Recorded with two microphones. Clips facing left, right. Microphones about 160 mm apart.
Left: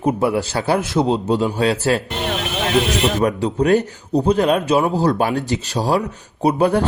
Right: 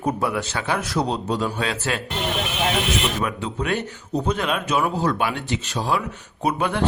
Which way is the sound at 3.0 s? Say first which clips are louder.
Left 8 dB; 35° left (ahead or behind).